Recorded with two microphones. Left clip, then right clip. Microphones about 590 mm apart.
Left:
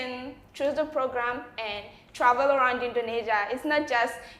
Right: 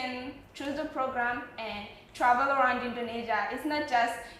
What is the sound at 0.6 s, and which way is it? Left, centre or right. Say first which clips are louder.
A woman's voice: left 6 dB; left.